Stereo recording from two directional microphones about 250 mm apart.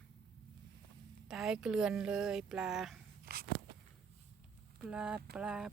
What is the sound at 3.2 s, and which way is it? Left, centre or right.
Biting, right.